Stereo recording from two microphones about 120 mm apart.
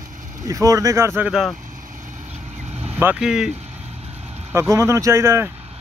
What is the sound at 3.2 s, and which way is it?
Speech, 5° right (ahead or behind).